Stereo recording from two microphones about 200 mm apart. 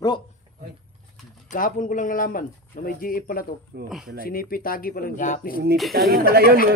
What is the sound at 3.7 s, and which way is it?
Speech, 55° right (ahead or behind).